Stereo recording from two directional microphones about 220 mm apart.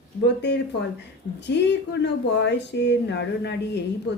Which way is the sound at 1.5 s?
50° left (ahead or behind).